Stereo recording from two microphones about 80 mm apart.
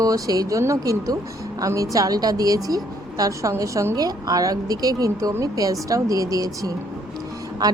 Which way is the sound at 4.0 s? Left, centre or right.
Right.